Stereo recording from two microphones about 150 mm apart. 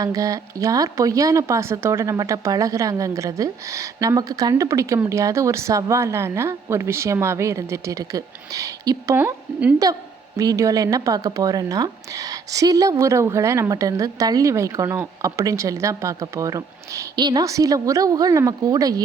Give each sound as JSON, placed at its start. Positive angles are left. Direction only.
{"t": 0.0, "sound": "speech", "side_deg": -25}
{"t": 9.1, "sound": "speech", "side_deg": -10}
{"t": 10.3, "sound": "speech", "side_deg": -25}